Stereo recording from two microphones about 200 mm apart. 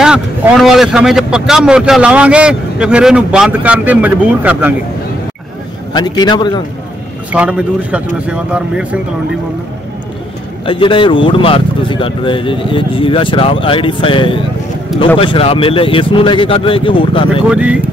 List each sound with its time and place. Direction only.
0.0 s a man's voice: 5° right (ahead or behind)
5.9 s speech: 20° left (ahead or behind)
7.3 s a man's voice: 5° right (ahead or behind)
10.6 s speech: 25° left (ahead or behind)
17.5 s a man's voice: 5° right (ahead or behind)